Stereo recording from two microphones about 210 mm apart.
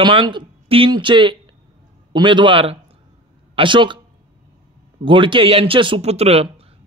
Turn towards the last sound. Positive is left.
turn(degrees=-30)  # may be behind; listen again after turning